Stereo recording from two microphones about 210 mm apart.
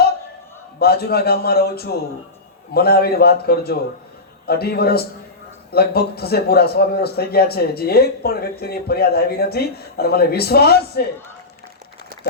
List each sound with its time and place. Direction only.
0.8 s a man's voice: 50° left (ahead or behind)